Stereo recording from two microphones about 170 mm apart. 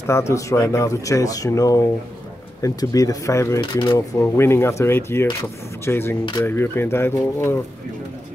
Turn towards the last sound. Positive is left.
turn(degrees=15)  # may be behind; listen again after turning